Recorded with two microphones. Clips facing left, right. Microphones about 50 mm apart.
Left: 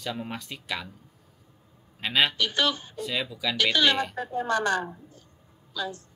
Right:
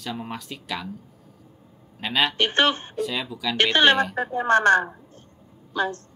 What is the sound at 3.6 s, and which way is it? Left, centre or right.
Speech, right.